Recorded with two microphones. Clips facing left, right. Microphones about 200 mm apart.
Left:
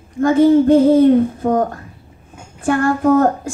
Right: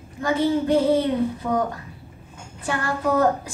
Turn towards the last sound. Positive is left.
turn(degrees=50)  # may be behind; listen again after turning